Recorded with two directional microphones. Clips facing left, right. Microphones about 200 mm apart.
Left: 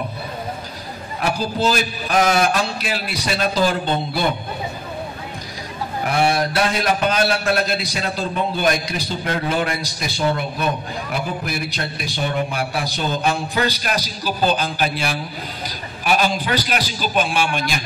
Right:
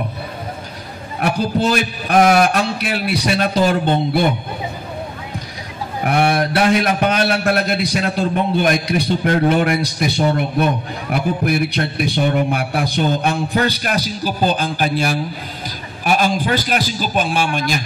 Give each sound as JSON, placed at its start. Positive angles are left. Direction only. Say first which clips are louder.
{"t": 1.2, "sound": "a man's voice", "louder": "right 3 dB", "side_deg": -60}
{"t": 6.0, "sound": "a man's voice", "louder": "right 3 dB", "side_deg": -60}